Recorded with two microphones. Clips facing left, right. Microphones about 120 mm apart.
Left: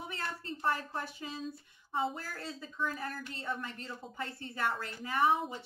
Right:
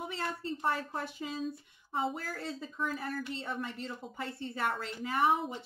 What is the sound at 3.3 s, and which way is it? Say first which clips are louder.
A woman's voice: right 2 dB; 20° right (ahead or behind).